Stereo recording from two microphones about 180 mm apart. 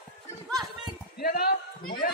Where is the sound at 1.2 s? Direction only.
55° left (ahead or behind).